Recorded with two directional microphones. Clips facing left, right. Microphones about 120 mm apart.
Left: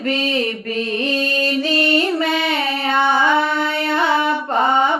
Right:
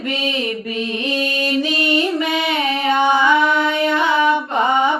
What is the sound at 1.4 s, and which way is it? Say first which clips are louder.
Music: left 1 dB; 15° right (ahead or behind).